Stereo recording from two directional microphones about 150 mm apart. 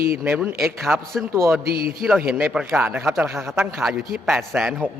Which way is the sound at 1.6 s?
90° right.